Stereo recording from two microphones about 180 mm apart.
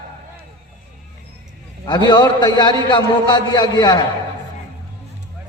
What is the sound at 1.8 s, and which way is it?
A man's voice, 25° left (ahead or behind).